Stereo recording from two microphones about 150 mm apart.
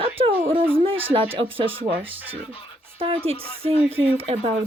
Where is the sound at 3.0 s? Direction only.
40° right (ahead or behind).